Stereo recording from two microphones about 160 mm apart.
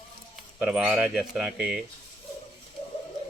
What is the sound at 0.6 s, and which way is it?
Speech, 5° right (ahead or behind).